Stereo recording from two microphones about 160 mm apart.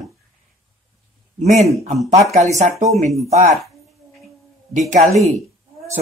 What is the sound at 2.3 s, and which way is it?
Speech, 45° right (ahead or behind).